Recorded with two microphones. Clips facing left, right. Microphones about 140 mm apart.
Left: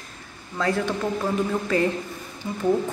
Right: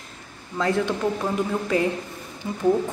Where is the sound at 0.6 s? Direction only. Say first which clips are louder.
Right 1 dB; 20° right (ahead or behind).